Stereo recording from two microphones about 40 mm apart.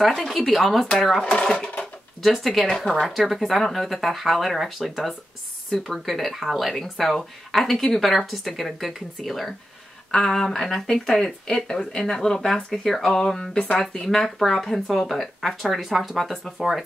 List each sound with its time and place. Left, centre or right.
0.0 s speech: centre
1.2 s speech: left
3.1 s speech: centre
10.1 s speech: centre